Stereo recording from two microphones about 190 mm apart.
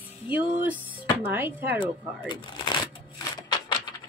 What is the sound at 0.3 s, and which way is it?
Speech, 10° right (ahead or behind).